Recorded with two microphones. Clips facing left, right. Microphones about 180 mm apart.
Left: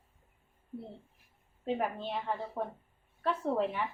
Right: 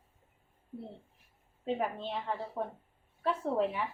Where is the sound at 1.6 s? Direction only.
5° left (ahead or behind).